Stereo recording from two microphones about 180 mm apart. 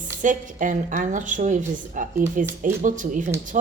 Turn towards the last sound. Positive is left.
turn(degrees=-45)  # may be behind; listen again after turning